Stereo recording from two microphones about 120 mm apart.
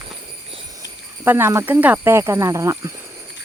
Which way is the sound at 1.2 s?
20° right (ahead or behind).